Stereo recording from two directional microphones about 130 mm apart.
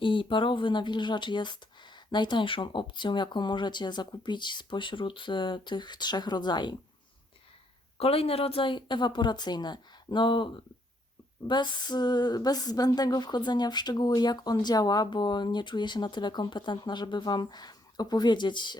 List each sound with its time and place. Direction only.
0.0 s speech: 40° left (ahead or behind)
7.9 s speech: 50° left (ahead or behind)